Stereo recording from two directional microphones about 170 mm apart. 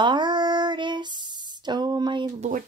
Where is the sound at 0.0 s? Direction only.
25° right (ahead or behind).